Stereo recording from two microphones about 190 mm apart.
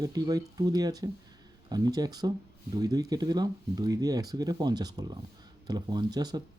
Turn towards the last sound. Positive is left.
turn(degrees=-20)  # may be behind; listen again after turning